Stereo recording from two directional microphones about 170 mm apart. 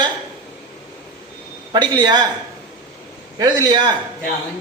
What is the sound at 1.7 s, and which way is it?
Speech, 25° right (ahead or behind).